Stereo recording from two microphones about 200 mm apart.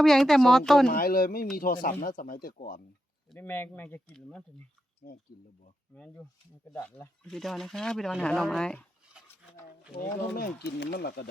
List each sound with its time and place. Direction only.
0.0 s speech: centre (ahead or behind)
0.9 s speech: 45° left (ahead or behind)
3.3 s speech: 10° left (ahead or behind)
5.9 s speech: 5° left (ahead or behind)
9.9 s speech: 50° left (ahead or behind)